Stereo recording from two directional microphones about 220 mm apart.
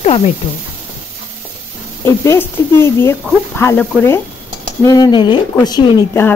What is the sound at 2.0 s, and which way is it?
Speech, 10° left (ahead or behind).